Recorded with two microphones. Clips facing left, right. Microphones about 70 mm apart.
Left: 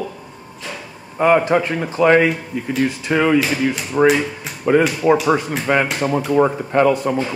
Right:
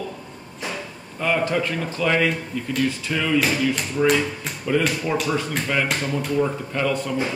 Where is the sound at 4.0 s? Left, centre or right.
Left.